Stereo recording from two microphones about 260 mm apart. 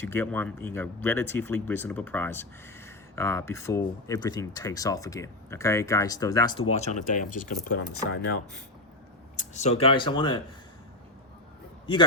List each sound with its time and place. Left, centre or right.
0.0 s speech: centre; by 7.9 s left
9.4 s speech: left
11.9 s speech: centre